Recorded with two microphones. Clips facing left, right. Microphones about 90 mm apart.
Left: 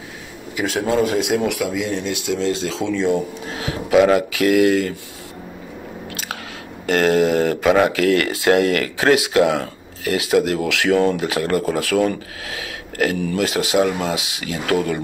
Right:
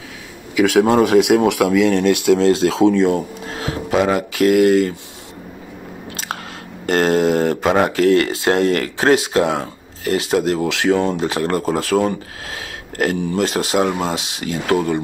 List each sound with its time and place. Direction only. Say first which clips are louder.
0.6 s speech: right 6 dB; 70° right (ahead or behind); by 4.9 s 45° right (ahead or behind)
6.9 s speech: right 1 dB; 35° right (ahead or behind)